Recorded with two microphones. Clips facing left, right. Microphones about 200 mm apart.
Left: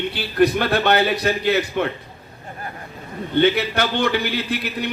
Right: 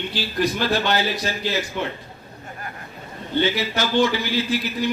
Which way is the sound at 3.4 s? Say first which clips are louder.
Left 5 dB; 60° left (ahead or behind).